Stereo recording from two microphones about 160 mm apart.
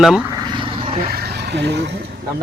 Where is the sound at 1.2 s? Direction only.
90° right.